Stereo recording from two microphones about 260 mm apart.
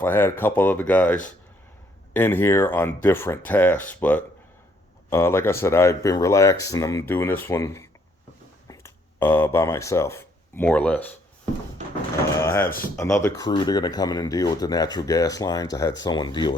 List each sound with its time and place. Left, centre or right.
0.0 s speech: centre
12.3 s a sound: centre
13.0 s speech: centre